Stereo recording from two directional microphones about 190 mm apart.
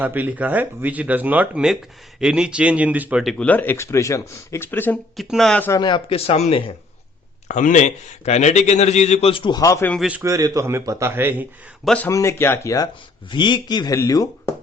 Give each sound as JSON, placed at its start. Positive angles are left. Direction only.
{"t": 0.0, "sound": "speech", "side_deg": -10}
{"t": 5.8, "sound": "speech", "side_deg": 25}
{"t": 7.4, "sound": "a man's voice", "side_deg": 40}
{"t": 9.9, "sound": "speech", "side_deg": -5}
{"t": 11.9, "sound": "speech", "side_deg": 10}